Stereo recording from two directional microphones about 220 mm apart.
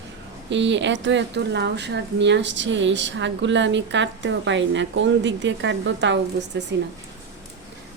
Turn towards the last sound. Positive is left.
turn(degrees=-55)  # may be behind; listen again after turning